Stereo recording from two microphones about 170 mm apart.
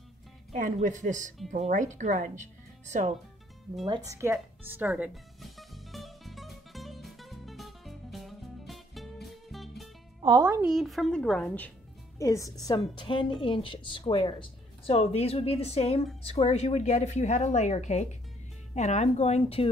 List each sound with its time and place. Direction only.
0.5 s speech: 45° right (ahead or behind)
3.8 s music: 20° right (ahead or behind); by 9.8 s centre (ahead or behind)
10.2 s a woman's voice: 20° right (ahead or behind)
10.6 s a woman's voice: centre (ahead or behind)
12.2 s a woman's voice: 20° left (ahead or behind); by 19.7 s 35° left (ahead or behind)